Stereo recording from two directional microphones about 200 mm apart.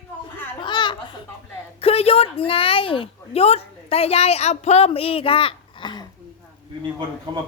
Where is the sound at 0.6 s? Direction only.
25° left (ahead or behind).